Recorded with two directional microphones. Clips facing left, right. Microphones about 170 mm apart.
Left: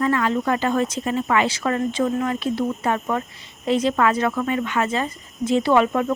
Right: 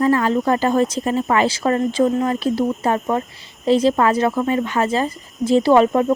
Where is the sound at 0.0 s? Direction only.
35° right (ahead or behind).